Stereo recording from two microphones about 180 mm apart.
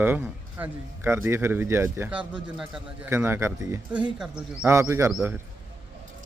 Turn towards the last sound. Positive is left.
turn(degrees=-15)  # may be behind; listen again after turning